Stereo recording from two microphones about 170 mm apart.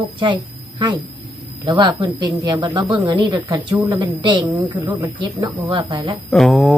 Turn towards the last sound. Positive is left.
turn(degrees=0)  # may be behind; listen again after turning